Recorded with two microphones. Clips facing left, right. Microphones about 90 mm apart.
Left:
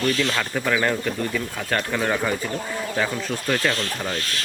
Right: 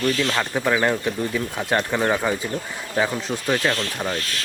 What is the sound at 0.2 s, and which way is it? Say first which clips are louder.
Speech: right 1 dB; 10° right (ahead or behind).